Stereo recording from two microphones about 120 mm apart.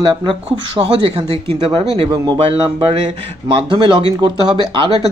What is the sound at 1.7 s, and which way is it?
Speech, 40° right (ahead or behind).